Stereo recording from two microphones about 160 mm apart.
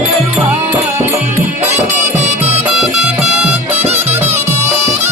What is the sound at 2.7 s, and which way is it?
Music, 5° right (ahead or behind).